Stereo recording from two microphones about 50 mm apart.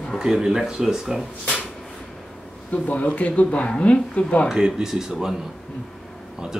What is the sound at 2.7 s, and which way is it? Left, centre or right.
Speech, left.